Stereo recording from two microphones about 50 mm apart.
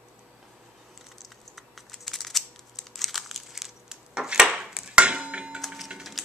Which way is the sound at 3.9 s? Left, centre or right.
Centre.